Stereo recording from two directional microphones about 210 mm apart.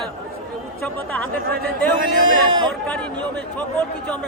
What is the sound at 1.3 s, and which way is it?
Speech, 45° right (ahead or behind).